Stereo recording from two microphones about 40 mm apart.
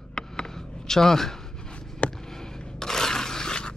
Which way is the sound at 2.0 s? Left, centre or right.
Left.